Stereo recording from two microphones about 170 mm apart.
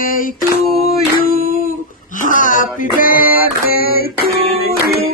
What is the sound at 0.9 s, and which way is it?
Singing, 60° left (ahead or behind).